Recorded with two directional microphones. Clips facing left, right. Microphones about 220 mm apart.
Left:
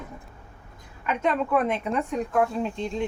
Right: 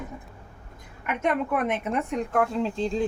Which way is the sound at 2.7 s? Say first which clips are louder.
Right 3 dB; 35° right (ahead or behind).